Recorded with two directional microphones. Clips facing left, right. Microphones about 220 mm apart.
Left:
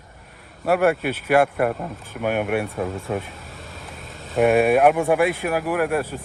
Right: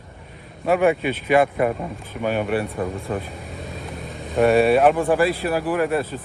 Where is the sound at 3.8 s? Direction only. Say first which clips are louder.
Right 6 dB; 15° right (ahead or behind).